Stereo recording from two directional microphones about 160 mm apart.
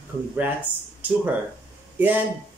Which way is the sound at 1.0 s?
10° right (ahead or behind).